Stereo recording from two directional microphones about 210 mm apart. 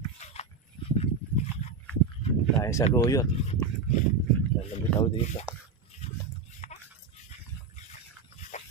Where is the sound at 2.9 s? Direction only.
15° left (ahead or behind).